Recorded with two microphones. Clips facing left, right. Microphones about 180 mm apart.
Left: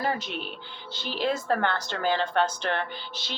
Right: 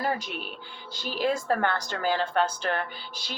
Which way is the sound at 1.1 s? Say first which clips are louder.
Even; 10° right (ahead or behind).